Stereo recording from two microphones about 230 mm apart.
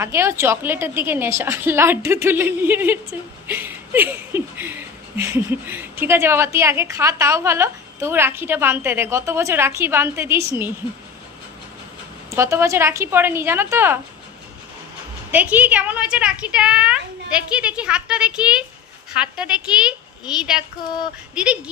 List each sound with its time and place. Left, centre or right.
0.0 s a woman's voice: centre
12.3 s a woman's voice: centre
15.3 s a woman's voice: centre